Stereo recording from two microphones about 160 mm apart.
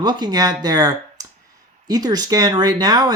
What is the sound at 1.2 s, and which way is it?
Clicking, 20° right (ahead or behind).